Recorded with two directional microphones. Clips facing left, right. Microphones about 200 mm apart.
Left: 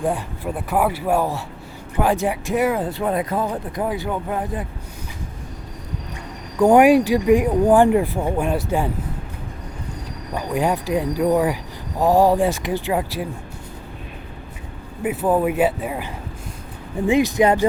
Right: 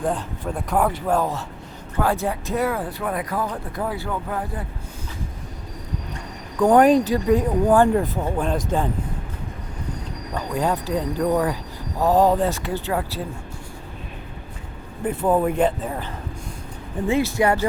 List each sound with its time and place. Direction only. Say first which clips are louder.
0.0 s speech: left 2 dB; 10° left (ahead or behind)
6.6 s speech: left 2 dB; 15° left (ahead or behind)
10.3 s speech: left 2 dB; 15° left (ahead or behind)
15.0 s speech: left 1 dB; 5° left (ahead or behind)
17.1 s speech: left 3 dB; 15° left (ahead or behind)